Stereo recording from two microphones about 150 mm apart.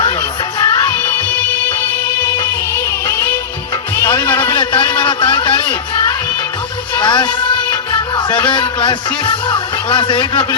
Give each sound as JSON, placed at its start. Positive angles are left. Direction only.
{"t": 0.6, "sound": "music", "side_deg": 25}
{"t": 2.4, "sound": "music", "side_deg": 20}
{"t": 4.5, "sound": "a sound", "side_deg": 30}
{"t": 7.0, "sound": "music", "side_deg": 30}